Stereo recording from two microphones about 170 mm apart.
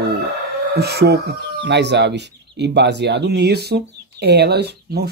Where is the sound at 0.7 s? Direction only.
70° right (ahead or behind).